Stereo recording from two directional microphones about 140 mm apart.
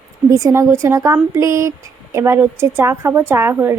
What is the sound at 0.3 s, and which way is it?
A woman's voice, 25° right (ahead or behind).